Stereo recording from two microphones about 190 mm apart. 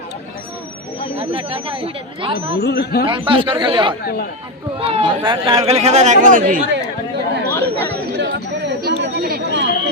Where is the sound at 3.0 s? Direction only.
25° right (ahead or behind); by 6.6 s 45° right (ahead or behind).